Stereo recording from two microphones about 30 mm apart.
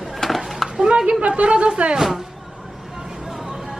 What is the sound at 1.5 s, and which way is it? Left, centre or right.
Speech, right.